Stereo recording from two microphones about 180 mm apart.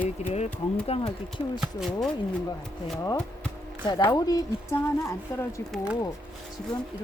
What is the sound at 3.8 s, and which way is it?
A woman's voice, 25° left (ahead or behind).